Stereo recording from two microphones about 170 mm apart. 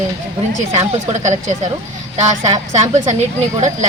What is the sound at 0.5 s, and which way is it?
A woman's voice, 45° right (ahead or behind).